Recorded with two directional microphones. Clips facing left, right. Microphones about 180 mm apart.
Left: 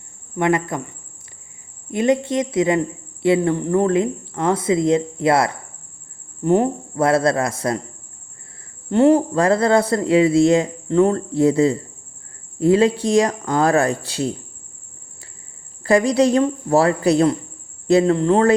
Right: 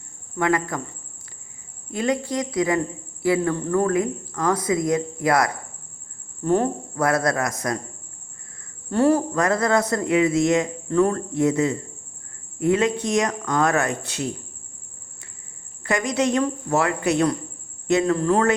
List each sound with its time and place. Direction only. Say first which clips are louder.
0.3 s speech: left 3 dB; 20° left (ahead or behind)
1.9 s speech: left 5 dB; 20° left (ahead or behind)
8.9 s speech: left 5 dB; 20° left (ahead or behind)
15.8 s speech: left 7 dB; 35° left (ahead or behind)